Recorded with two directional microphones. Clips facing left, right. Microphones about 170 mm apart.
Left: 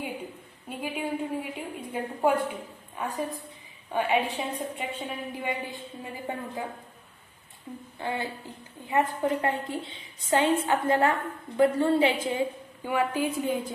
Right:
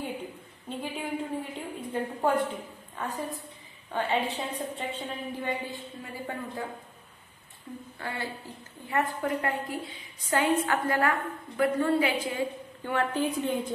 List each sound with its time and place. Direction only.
0.7 s a sound: 10° left (ahead or behind)
3.0 s a woman's voice: 10° left (ahead or behind)
8.0 s a woman's voice: 20° left (ahead or behind)
12.8 s a woman's voice: 10° left (ahead or behind)